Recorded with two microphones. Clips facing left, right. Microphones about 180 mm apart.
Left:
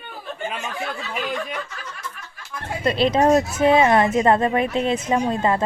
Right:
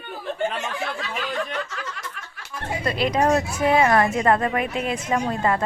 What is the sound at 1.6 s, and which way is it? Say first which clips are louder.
Snicker: right 2 dB; 85° right.